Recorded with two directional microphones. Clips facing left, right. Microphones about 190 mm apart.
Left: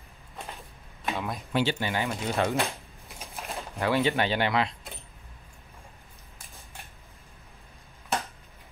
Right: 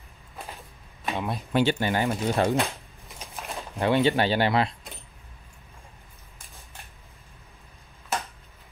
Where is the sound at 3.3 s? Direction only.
Centre (ahead or behind).